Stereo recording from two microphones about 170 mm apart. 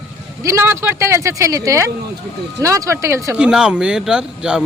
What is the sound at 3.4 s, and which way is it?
Speech, 5° right (ahead or behind).